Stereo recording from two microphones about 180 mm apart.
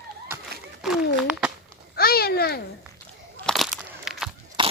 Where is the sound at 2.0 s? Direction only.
60° left (ahead or behind).